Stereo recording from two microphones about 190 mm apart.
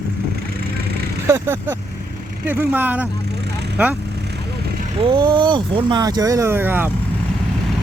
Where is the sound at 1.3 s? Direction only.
10° right (ahead or behind).